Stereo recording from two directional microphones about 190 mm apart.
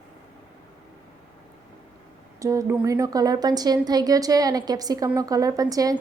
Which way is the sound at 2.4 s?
15° right (ahead or behind).